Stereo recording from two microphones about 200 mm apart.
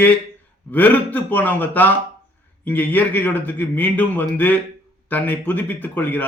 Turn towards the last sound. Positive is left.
turn(degrees=10)  # may be behind; listen again after turning